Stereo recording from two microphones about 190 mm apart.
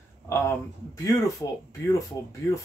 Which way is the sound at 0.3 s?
15° left (ahead or behind).